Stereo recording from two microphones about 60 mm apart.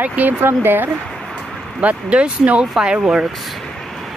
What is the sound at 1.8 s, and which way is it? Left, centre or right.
Speech, right.